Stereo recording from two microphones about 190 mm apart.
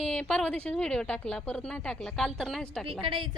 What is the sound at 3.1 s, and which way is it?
Speech, 25° right (ahead or behind).